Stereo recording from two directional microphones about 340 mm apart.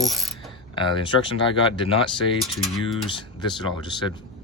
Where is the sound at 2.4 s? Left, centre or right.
Centre.